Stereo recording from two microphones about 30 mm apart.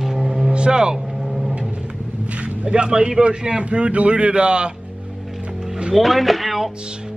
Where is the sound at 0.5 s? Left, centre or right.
Right.